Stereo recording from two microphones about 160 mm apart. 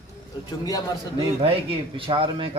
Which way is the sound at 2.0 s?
35° right (ahead or behind).